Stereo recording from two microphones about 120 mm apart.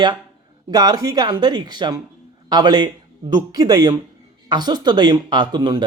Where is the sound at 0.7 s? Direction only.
35° right (ahead or behind).